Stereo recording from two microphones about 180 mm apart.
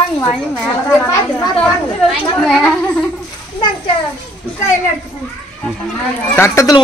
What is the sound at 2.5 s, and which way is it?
Speech, 5° left (ahead or behind).